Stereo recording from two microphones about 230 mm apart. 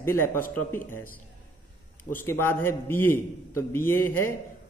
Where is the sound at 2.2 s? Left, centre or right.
Centre.